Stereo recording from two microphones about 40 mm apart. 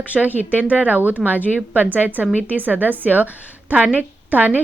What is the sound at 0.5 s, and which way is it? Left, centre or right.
Speech, right.